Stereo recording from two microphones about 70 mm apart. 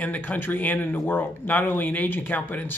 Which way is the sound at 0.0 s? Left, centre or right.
Left.